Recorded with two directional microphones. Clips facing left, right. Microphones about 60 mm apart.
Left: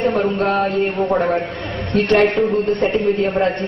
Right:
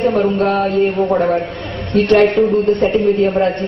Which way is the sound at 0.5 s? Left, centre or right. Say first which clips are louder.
Right 2 dB; centre.